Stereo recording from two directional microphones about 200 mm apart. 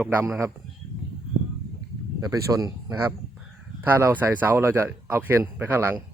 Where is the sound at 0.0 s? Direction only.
10° right (ahead or behind).